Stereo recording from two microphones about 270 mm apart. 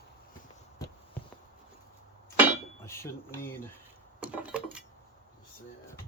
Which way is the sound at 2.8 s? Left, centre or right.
Centre.